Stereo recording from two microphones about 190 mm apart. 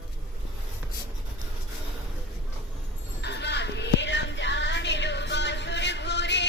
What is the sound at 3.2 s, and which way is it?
Music, 65° left (ahead or behind).